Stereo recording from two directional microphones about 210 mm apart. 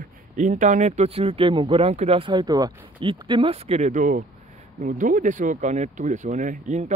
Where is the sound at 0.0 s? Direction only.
35° right (ahead or behind).